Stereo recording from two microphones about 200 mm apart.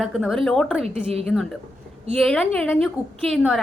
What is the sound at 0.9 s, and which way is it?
Speech, 30° right (ahead or behind).